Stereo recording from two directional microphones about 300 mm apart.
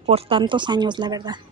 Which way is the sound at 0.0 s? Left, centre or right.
Centre.